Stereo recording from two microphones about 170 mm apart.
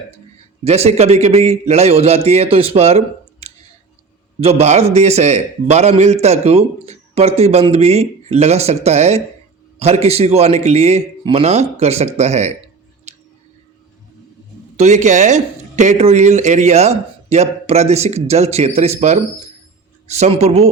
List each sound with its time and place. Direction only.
0.6 s a man's voice: 40° right (ahead or behind)
4.4 s a man's voice: 35° right (ahead or behind)
14.8 s a man's voice: 45° right (ahead or behind)